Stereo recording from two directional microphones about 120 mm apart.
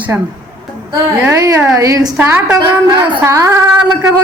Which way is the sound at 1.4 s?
30° right (ahead or behind).